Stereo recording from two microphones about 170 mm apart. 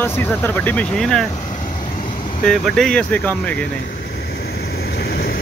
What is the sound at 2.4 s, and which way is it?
Speech, centre (ahead or behind).